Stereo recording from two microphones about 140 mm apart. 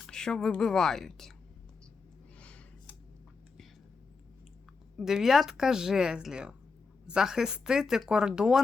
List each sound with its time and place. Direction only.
0.1 s speech: 5° left (ahead or behind)
4.9 s speech: 5° right (ahead or behind)